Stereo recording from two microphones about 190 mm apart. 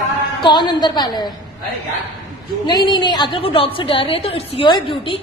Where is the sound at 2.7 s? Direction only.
20° left (ahead or behind).